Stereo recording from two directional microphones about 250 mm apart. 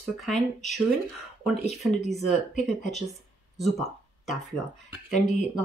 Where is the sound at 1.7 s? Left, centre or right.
Centre.